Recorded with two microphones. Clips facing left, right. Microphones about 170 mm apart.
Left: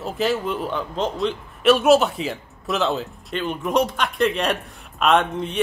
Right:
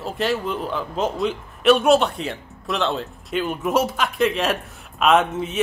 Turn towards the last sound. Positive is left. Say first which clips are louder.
# right 1 dB
turn(degrees=-5)  # may be behind; listen again after turning